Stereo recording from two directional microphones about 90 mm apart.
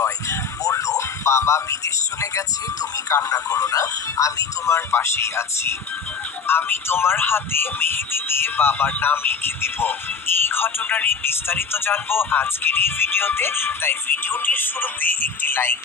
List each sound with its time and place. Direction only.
0.0 s a sound: 35° left (ahead or behind)
3.1 s speech: 35° left (ahead or behind)
6.5 s speech: 25° left (ahead or behind)